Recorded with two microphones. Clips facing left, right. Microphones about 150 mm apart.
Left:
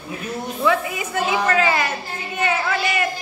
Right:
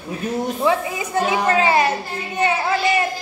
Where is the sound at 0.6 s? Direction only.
30° right (ahead or behind).